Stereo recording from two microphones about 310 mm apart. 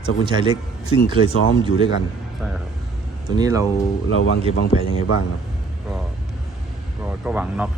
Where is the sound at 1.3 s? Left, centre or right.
Left.